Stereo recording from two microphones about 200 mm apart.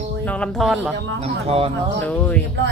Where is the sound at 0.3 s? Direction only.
5° left (ahead or behind).